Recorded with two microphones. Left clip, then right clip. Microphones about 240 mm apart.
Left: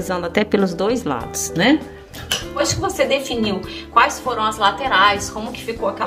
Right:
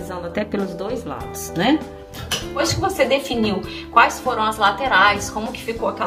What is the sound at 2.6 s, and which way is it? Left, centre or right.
A woman's voice, centre.